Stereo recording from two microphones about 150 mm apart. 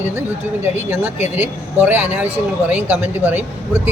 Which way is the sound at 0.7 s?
15° right (ahead or behind).